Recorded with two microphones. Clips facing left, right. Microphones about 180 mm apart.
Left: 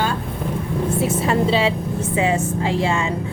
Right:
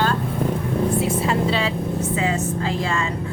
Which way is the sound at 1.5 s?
25° left (ahead or behind).